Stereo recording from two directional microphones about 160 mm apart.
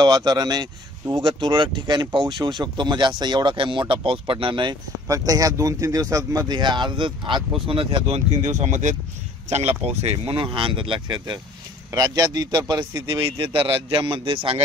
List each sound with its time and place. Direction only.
0.0 s speech: 25° right (ahead or behind)
8.4 s speech: 50° right (ahead or behind)